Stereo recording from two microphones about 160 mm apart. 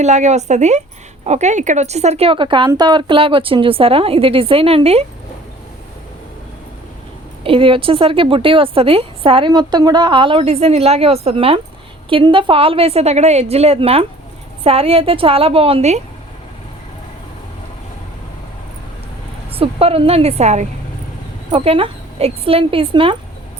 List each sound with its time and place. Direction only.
0.0 s speech: 45° right (ahead or behind)
7.4 s speech: 35° right (ahead or behind)
9.5 s speech: 25° right (ahead or behind); by 16.0 s 40° right (ahead or behind)
19.5 s speech: 35° right (ahead or behind)